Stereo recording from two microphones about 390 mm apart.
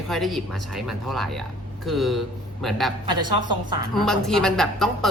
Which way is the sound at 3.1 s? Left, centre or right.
Right.